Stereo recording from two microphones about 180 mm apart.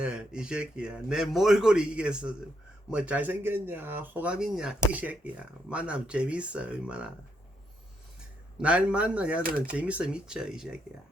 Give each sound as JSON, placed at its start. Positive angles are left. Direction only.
{"t": 0.0, "sound": "a man's voice", "side_deg": -5}
{"t": 8.6, "sound": "speech", "side_deg": -5}
{"t": 9.4, "sound": "speech", "side_deg": -55}
{"t": 9.7, "sound": "a man's voice", "side_deg": -5}